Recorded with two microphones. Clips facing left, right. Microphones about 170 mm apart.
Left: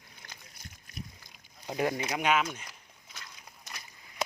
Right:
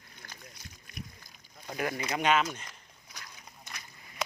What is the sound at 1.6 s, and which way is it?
Speech, 20° left (ahead or behind).